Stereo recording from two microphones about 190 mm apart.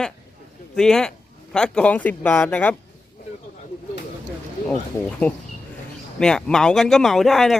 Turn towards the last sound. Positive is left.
turn(degrees=0)  # may be behind; listen again after turning